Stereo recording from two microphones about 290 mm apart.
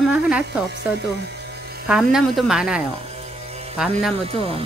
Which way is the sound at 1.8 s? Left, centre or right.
Centre.